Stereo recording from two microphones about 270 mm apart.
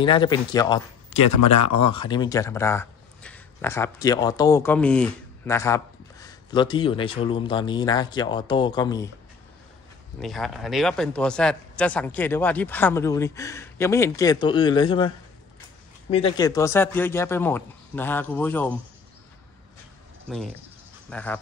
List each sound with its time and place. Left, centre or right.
0.0 s speech: centre
1.5 s speech: left
1.9 s speech: centre
10.2 s speech: centre
20.2 s speech: centre